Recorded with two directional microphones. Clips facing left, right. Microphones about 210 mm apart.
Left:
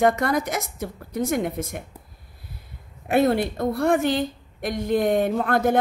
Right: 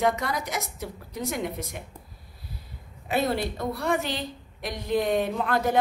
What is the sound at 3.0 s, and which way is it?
A woman's voice, 55° left (ahead or behind).